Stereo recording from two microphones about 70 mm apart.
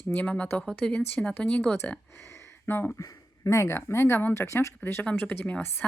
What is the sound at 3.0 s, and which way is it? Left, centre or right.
Speech, left.